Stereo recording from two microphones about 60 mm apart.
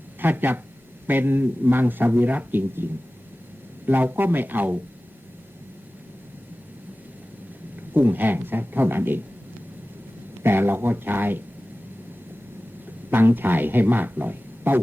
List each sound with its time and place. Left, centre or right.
0.2 s a man's voice: right
3.8 s a man's voice: right
7.8 s a man's voice: right
10.4 s a man's voice: right
13.1 s a man's voice: right